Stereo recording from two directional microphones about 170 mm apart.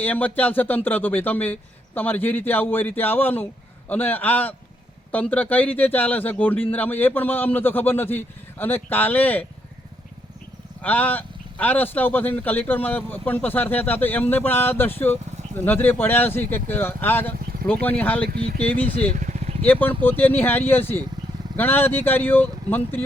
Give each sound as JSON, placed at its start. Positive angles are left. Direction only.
{"t": 0.0, "sound": "a man's voice", "side_deg": 10}
{"t": 10.8, "sound": "a man's voice", "side_deg": 10}
{"t": 19.1, "sound": "vehicle", "side_deg": -50}
{"t": 19.6, "sound": "a man's voice", "side_deg": 10}